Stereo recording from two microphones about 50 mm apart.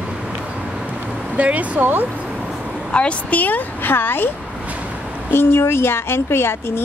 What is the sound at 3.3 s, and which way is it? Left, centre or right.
Speech, left.